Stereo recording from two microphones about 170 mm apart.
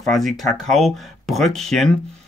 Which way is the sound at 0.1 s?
Centre (ahead or behind).